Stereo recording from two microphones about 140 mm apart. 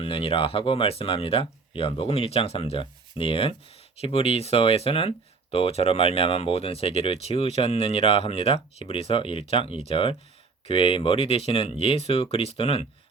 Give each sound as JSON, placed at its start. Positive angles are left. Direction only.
{"t": 0.0, "sound": "speech", "side_deg": 40}